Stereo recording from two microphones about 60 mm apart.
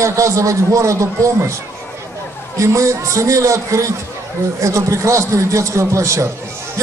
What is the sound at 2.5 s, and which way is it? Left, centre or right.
A man's voice, right.